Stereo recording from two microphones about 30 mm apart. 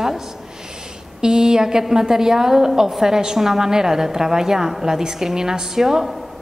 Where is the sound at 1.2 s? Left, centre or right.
Right.